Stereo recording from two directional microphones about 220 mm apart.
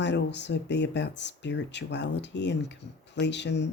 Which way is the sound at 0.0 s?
50° left (ahead or behind).